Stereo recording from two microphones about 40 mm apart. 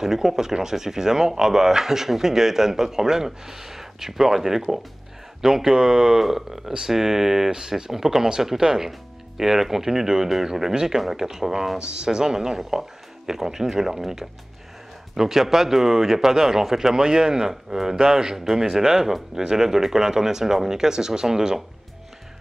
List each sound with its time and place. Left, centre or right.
0.0 s speech: centre
11.8 s speech: centre